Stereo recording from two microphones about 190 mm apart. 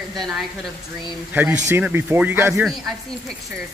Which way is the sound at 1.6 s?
10° right (ahead or behind).